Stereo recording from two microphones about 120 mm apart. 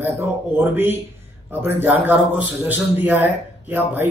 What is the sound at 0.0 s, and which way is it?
A man's voice, 20° right (ahead or behind).